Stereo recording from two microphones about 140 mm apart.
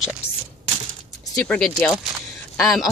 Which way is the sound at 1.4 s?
5° left (ahead or behind).